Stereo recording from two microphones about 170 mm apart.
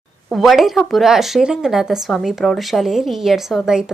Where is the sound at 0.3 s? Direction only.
Centre (ahead or behind).